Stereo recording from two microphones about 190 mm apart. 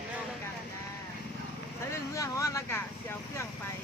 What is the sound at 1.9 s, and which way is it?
Speech, 15° left (ahead or behind).